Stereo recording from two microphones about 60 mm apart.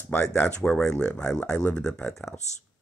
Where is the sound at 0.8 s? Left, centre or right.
Centre.